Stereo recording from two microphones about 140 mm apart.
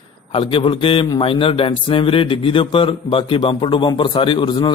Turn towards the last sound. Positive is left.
turn(degrees=35)  # may be behind; listen again after turning